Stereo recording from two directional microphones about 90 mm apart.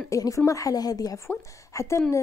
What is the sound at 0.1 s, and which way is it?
A woman's voice, 40° left (ahead or behind).